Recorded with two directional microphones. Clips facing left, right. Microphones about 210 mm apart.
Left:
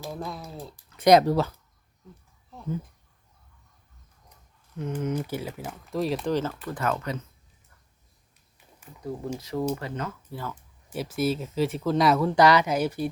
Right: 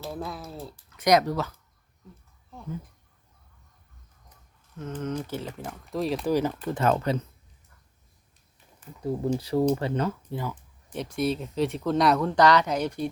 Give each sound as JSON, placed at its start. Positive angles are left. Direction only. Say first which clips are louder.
{"t": 0.1, "sound": "speech", "louder": "even", "side_deg": -5}
{"t": 0.9, "sound": "speech", "louder": "left 4 dB", "side_deg": 30}
{"t": 4.8, "sound": "speech", "louder": "left 3 dB", "side_deg": 10}
{"t": 6.3, "sound": "speech", "louder": "right 3 dB", "side_deg": -20}
{"t": 9.4, "sound": "speech", "louder": "right 4 dB", "side_deg": -30}
{"t": 10.3, "sound": "speech", "louder": "right 3 dB", "side_deg": -15}
{"t": 10.8, "sound": "speech", "louder": "left 1 dB", "side_deg": 5}